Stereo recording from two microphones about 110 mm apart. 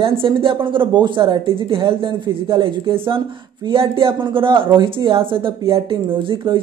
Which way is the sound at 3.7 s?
55° right (ahead or behind).